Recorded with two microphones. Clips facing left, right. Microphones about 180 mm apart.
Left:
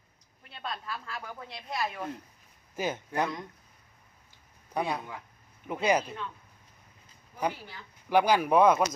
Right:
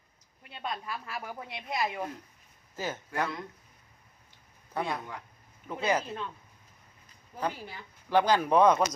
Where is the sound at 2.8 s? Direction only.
15° left (ahead or behind).